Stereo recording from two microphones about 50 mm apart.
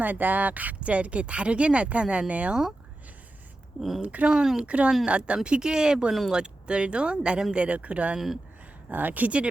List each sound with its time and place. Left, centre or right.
0.0 s speech: right
3.8 s speech: centre
4.0 s speech: right
4.3 s speech: centre
4.6 s speech: right